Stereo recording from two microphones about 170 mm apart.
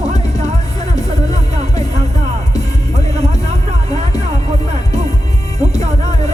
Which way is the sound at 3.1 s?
40° right (ahead or behind).